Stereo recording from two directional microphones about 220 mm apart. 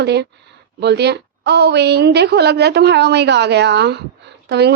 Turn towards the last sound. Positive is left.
turn(degrees=-50)  # may be behind; listen again after turning